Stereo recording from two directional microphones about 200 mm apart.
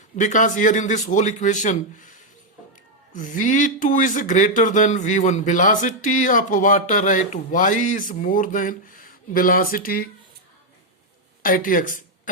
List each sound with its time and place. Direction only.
0.2 s speech: 40° left (ahead or behind)
3.1 s speech: 40° left (ahead or behind)
11.4 s speech: 45° left (ahead or behind)